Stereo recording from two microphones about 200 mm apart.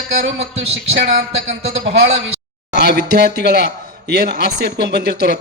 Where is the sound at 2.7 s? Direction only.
55° right (ahead or behind).